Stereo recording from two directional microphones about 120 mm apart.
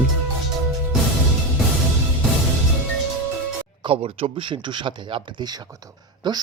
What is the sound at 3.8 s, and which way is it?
A man's voice, 50° right (ahead or behind).